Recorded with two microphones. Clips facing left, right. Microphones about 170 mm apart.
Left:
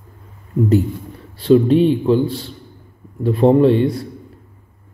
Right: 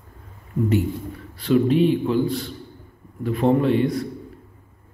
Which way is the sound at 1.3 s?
30° left (ahead or behind).